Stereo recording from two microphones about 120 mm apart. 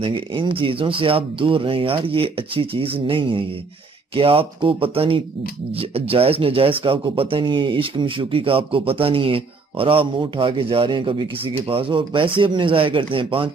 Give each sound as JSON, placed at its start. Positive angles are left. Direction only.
{"t": 0.0, "sound": "speech", "side_deg": -45}